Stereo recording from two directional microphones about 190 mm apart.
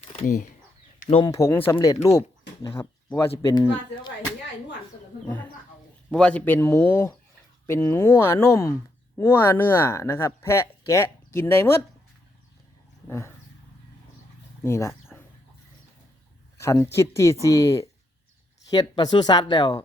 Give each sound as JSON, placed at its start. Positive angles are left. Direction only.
{"t": 1.3, "sound": "speech", "side_deg": 15}
{"t": 6.1, "sound": "speech", "side_deg": 5}
{"t": 13.1, "sound": "a sound", "side_deg": 15}
{"t": 14.6, "sound": "speech", "side_deg": 15}
{"t": 16.6, "sound": "speech", "side_deg": 15}